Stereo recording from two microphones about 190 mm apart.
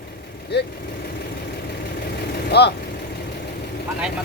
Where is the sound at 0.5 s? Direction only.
60° left (ahead or behind).